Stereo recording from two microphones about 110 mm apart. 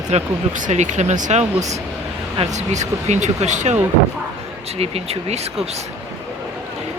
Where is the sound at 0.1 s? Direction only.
85° right.